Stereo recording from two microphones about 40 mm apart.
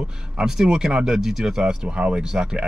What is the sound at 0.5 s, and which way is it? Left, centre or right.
Speech, centre.